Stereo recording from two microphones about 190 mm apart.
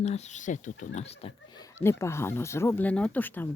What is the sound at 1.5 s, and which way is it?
Speech, 15° left (ahead or behind).